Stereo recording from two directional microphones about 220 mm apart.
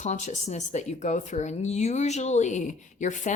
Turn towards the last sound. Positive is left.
turn(degrees=35)  # may be behind; listen again after turning